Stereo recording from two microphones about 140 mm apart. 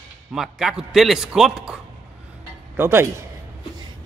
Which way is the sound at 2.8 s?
15° right (ahead or behind).